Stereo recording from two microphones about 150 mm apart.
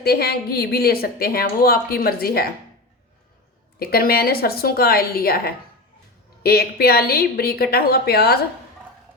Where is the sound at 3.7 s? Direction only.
90° left.